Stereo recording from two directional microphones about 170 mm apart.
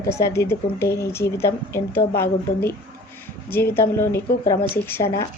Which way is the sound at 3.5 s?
15° left (ahead or behind).